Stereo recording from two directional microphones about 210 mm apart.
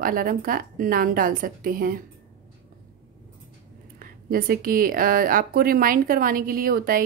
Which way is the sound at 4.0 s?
45° right (ahead or behind).